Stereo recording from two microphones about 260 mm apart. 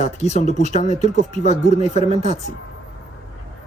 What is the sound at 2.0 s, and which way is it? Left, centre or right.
Speech, right.